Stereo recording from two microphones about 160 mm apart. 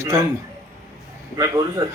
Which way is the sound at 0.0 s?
20° right (ahead or behind).